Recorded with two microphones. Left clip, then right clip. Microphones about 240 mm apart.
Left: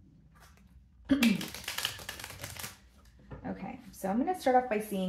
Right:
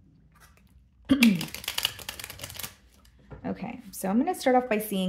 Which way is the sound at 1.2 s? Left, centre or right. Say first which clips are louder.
Right 6 dB; right.